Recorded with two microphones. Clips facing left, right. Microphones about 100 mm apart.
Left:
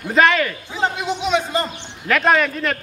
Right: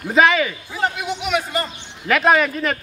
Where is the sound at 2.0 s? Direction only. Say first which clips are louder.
Right 1 dB; 5° right (ahead or behind).